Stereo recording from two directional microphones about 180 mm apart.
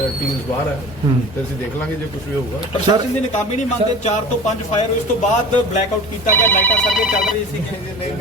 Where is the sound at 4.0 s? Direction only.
40° left (ahead or behind).